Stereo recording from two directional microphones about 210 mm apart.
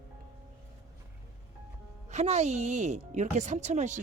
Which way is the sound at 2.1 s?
30° right (ahead or behind).